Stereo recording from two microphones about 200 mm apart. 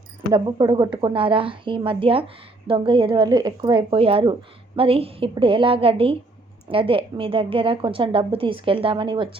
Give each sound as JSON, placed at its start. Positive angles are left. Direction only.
{"t": 0.3, "sound": "a woman's voice", "side_deg": -20}